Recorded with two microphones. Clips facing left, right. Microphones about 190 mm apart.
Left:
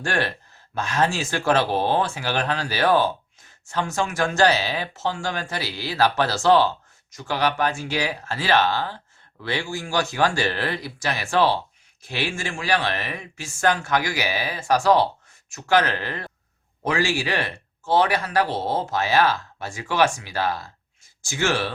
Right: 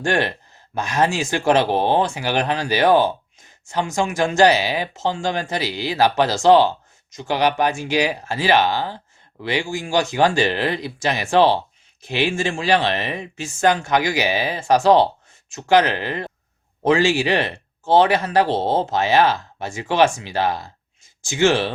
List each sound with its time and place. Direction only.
0.0 s speech: 20° right (ahead or behind)